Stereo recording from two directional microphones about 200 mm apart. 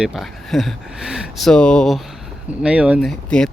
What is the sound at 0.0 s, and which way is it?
Speech, centre (ahead or behind).